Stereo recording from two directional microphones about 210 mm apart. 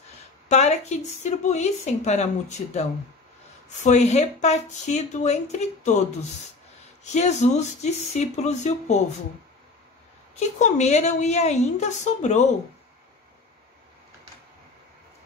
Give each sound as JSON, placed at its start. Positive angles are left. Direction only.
{"t": 0.5, "sound": "speech", "side_deg": 30}
{"t": 7.2, "sound": "speech", "side_deg": 35}
{"t": 10.6, "sound": "speech", "side_deg": 30}